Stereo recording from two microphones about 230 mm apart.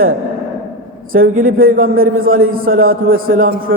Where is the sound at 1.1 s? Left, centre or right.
Right.